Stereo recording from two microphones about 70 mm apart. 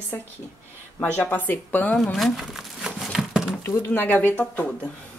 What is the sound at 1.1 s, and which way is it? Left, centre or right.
Speech, left.